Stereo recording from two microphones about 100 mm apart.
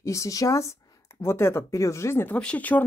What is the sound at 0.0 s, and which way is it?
Speech, 30° left (ahead or behind).